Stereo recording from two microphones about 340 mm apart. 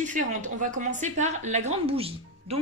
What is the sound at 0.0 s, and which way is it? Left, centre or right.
Speech, right.